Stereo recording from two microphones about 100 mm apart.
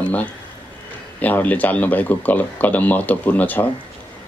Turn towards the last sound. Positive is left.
turn(degrees=15)  # may be behind; listen again after turning